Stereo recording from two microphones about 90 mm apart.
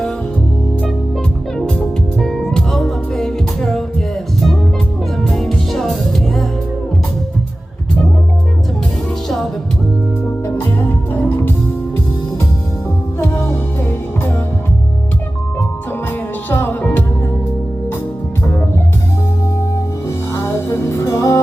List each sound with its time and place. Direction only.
2.1 s music: 5° left (ahead or behind)
5.2 s music: 5° left (ahead or behind)
10.4 s music: 25° left (ahead or behind)
16.5 s music: 25° left (ahead or behind)
20.3 s music: 35° left (ahead or behind)